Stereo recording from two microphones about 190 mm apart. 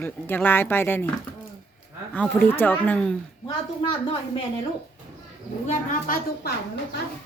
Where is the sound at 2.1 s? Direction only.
10° left (ahead or behind).